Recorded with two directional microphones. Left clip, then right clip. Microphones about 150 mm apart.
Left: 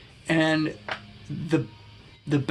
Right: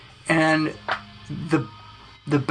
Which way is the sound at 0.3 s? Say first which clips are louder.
Right 3 dB; 25° left (ahead or behind).